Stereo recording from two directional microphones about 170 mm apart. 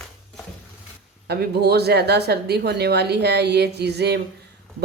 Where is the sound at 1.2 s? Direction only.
75° right (ahead or behind).